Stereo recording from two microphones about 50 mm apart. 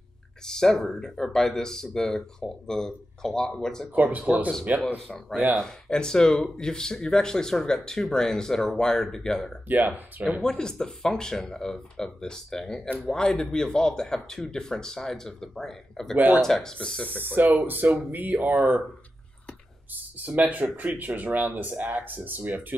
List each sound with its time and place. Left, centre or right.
0.5 s speech: centre
3.9 s speech: right
5.6 s speech: centre
9.7 s speech: right
10.6 s speech: centre
16.7 s speech: left
17.2 s speech: right
19.9 s speech: right